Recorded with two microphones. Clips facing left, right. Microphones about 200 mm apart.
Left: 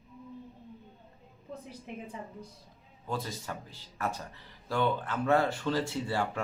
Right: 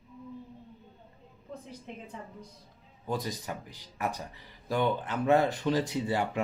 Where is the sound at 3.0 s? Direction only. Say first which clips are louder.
Right 3 dB; 15° right (ahead or behind).